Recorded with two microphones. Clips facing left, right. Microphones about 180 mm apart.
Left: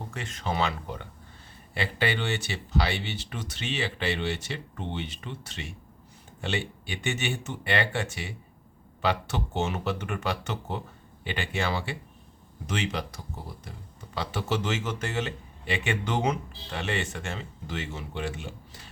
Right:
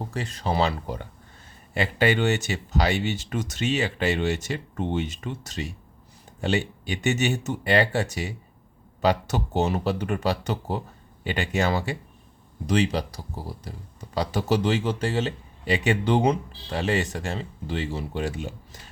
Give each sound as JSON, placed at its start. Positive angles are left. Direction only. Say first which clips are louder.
{"t": 0.1, "sound": "speech", "louder": "right 3 dB", "side_deg": -35}